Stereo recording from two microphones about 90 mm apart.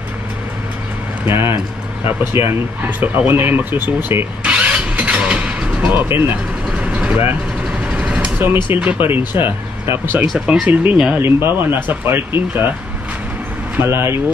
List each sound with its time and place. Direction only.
1.2 s speech: 25° right (ahead or behind)
4.4 s vehicle: 15° right (ahead or behind)
5.9 s speech: 25° right (ahead or behind)
6.8 s vehicle: 15° right (ahead or behind)
8.6 s speech: 15° right (ahead or behind)
10.4 s speech: 10° right (ahead or behind)
11.1 s speech: 25° right (ahead or behind)
13.8 s speech: 30° right (ahead or behind)